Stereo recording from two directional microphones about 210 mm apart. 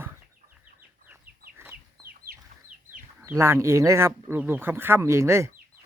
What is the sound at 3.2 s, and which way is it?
Speech, 10° right (ahead or behind).